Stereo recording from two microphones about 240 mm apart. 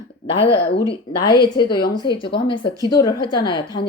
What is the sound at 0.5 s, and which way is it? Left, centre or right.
Speech, left.